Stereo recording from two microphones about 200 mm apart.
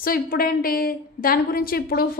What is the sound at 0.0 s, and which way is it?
A woman's voice, 45° left (ahead or behind).